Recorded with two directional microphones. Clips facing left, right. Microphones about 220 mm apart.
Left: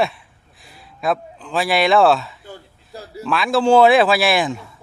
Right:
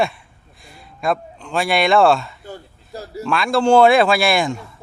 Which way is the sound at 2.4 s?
45° right (ahead or behind).